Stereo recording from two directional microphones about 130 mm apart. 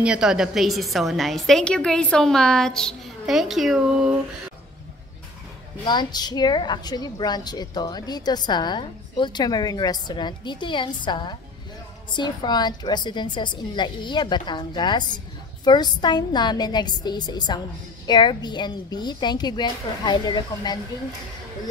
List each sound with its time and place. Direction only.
0.0 s a woman's voice: 5° right (ahead or behind)
5.9 s a woman's voice: 35° left (ahead or behind)